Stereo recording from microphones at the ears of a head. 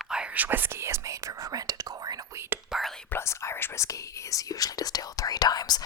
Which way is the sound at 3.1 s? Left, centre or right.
Left.